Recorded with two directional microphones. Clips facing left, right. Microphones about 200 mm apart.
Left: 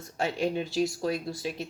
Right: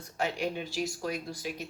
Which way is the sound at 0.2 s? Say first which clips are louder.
Left 4 dB; 25° left (ahead or behind).